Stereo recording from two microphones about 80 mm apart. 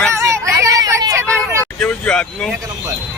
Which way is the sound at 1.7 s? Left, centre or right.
Centre.